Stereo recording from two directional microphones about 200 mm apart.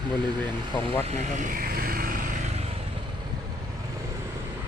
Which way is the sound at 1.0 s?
35° right (ahead or behind).